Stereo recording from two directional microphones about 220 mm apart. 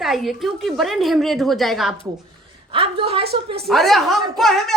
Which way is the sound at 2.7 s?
25° right (ahead or behind).